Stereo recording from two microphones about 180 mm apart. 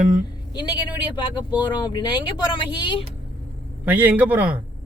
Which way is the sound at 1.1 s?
25° left (ahead or behind).